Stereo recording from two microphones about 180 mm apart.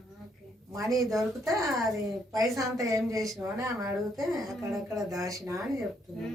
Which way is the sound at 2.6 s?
15° right (ahead or behind).